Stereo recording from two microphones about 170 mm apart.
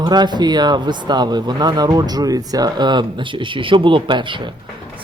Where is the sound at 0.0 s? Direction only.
25° right (ahead or behind).